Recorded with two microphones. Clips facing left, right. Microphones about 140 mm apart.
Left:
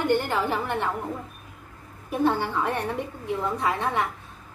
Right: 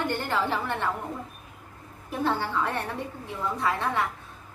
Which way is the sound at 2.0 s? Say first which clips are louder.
Left 4 dB; 15° left (ahead or behind).